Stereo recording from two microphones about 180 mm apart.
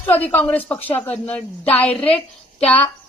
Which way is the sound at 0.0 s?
10° left (ahead or behind).